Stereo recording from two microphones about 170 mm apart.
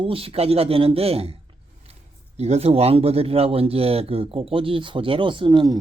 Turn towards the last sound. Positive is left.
turn(degrees=-25)  # may be behind; listen again after turning